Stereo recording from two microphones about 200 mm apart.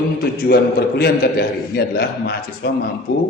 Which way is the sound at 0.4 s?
50° left (ahead or behind).